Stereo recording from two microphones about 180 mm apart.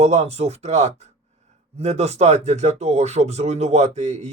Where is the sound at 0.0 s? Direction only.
35° right (ahead or behind).